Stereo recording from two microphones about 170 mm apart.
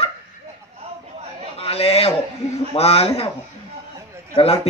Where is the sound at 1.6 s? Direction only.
35° left (ahead or behind).